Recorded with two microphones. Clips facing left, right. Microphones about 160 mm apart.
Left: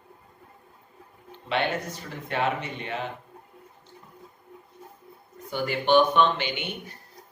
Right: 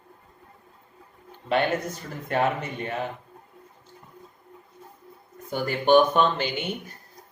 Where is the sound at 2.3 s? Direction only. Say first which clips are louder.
Right 4 dB; 45° right (ahead or behind).